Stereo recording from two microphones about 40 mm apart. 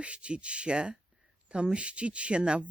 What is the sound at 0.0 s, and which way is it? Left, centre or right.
Speech, right.